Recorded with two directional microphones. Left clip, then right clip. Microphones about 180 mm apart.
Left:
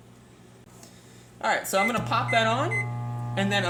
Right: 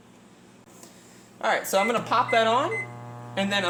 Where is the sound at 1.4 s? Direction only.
15° right (ahead or behind).